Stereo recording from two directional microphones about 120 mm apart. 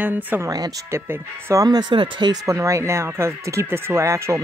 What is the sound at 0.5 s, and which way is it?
Speech, 30° right (ahead or behind).